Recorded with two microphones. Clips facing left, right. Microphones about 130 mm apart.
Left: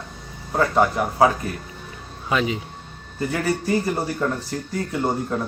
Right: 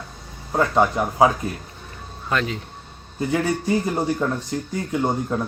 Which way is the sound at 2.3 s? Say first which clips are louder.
Left 2 dB; 5° left (ahead or behind).